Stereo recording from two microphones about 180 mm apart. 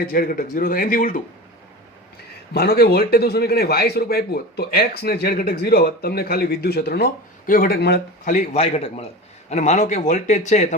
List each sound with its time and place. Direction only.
0.1 s speech: 55° left (ahead or behind)
2.5 s a man's voice: 60° left (ahead or behind)
8.2 s speech: 45° left (ahead or behind)